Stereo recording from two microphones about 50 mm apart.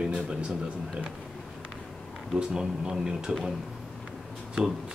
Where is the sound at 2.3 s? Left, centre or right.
Centre.